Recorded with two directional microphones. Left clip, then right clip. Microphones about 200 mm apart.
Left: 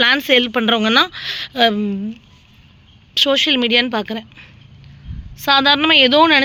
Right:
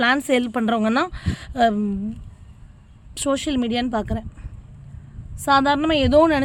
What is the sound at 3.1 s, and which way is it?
Speech, 5° right (ahead or behind).